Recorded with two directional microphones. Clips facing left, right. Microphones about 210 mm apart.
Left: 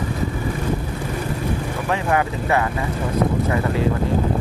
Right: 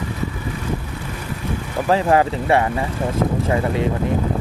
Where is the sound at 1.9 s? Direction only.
30° right (ahead or behind).